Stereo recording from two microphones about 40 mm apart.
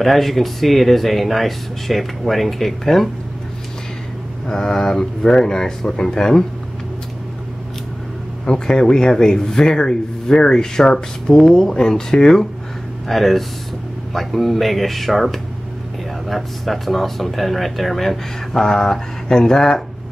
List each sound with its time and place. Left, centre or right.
0.0 s speech: centre
4.5 s speech: centre
8.5 s speech: centre
13.1 s speech: centre
18.5 s speech: centre